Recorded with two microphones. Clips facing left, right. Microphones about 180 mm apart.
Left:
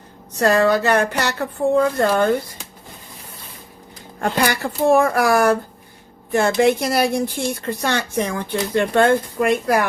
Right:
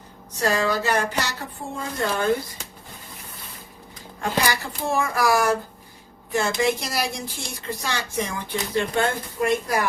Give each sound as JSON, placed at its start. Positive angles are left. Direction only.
{"t": 0.3, "sound": "speech", "side_deg": 60}
{"t": 4.2, "sound": "speech", "side_deg": 60}